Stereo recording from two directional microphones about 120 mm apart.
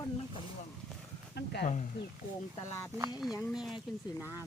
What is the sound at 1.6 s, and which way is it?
Speech, 85° left.